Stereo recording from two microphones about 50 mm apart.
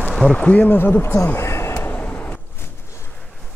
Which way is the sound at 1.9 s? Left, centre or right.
Left.